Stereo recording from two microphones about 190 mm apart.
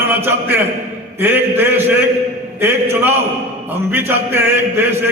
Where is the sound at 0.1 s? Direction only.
10° right (ahead or behind).